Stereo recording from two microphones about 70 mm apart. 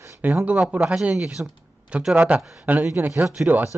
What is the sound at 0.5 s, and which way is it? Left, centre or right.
Speech, centre.